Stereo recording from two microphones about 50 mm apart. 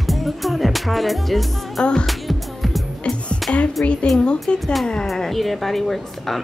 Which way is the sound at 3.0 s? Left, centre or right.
Left.